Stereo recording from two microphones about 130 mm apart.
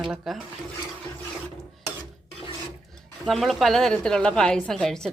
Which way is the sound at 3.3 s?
Centre (ahead or behind).